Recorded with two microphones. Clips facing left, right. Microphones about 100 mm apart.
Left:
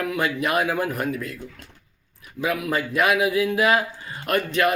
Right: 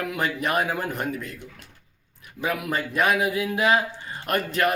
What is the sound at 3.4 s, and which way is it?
Speech, centre (ahead or behind).